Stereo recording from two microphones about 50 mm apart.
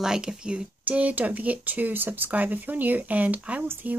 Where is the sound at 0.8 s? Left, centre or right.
Right.